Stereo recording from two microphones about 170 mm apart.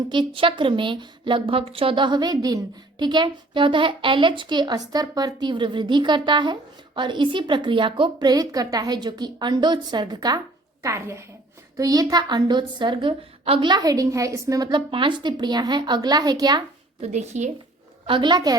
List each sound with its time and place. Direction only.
0.1 s a woman's voice: 30° right (ahead or behind)
17.0 s a woman's voice: 40° right (ahead or behind)
18.0 s a woman's voice: 30° right (ahead or behind)